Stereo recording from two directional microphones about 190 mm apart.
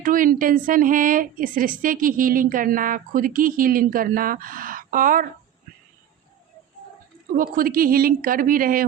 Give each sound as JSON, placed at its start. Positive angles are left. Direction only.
{"t": 0.0, "sound": "a woman's voice", "side_deg": -45}
{"t": 7.3, "sound": "a woman's voice", "side_deg": -50}